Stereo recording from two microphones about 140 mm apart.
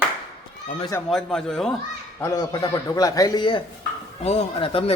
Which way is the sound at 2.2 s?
25° left (ahead or behind).